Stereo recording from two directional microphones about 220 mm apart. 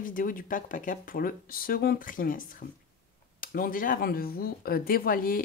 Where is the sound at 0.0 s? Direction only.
40° left (ahead or behind).